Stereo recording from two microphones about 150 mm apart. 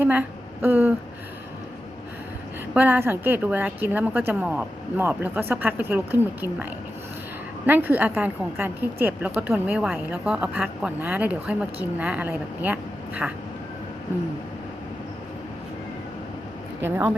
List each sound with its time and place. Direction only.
0.0 s a woman's voice: 10° right (ahead or behind)
2.7 s a woman's voice: 10° right (ahead or behind)
7.7 s a woman's voice: 10° right (ahead or behind)
16.8 s a woman's voice: 15° right (ahead or behind)